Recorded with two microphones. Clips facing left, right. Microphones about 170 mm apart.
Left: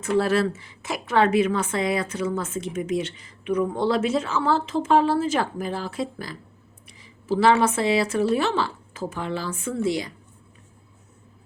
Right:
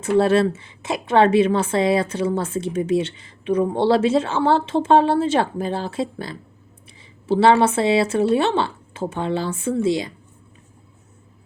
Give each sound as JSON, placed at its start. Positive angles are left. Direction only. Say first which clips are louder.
{"t": 0.2, "sound": "a woman's voice", "louder": "right 6 dB", "side_deg": -25}